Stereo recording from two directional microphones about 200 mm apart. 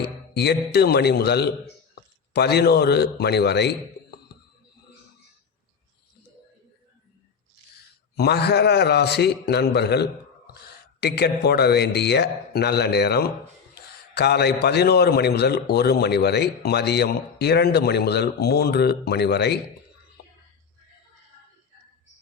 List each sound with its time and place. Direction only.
0.3 s a man's voice: 55° left (ahead or behind)
8.1 s a man's voice: 55° left (ahead or behind)